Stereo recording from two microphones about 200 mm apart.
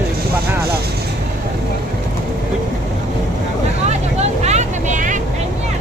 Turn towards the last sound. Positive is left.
turn(degrees=-40)  # may be behind; listen again after turning